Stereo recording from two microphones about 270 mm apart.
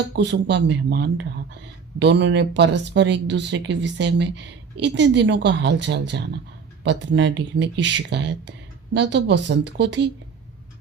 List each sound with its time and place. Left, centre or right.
0.2 s speech: right